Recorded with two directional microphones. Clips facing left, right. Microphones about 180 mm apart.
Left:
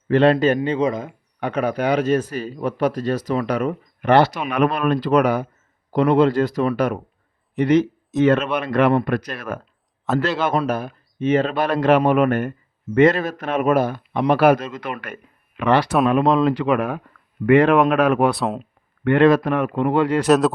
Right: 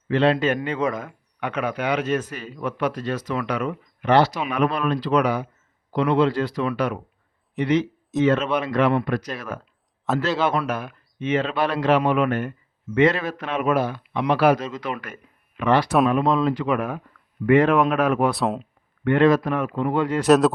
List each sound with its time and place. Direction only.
0.1 s speech: 50° left (ahead or behind)
0.4 s speech: 30° left (ahead or behind)
1.4 s speech: 35° left (ahead or behind)
4.1 s speech: 60° left (ahead or behind)
8.2 s speech: 60° left (ahead or behind)
10.7 s speech: 35° left (ahead or behind); by 14.9 s 55° left (ahead or behind)
15.0 s a man's voice: 70° left (ahead or behind)
18.3 s speech: centre (ahead or behind)
19.0 s a man's voice: 70° left (ahead or behind)
20.2 s speech: centre (ahead or behind)